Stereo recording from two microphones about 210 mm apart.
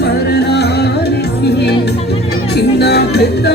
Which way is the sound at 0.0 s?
50° left (ahead or behind).